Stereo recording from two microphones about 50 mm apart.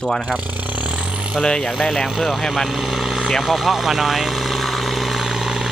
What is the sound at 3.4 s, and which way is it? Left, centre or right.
Vehicle, centre.